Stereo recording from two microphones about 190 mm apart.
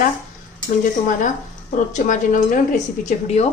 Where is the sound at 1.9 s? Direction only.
40° left (ahead or behind).